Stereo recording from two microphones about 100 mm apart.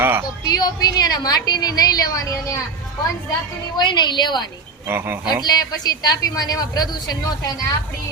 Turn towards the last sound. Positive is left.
turn(degrees=40)  # may be behind; listen again after turning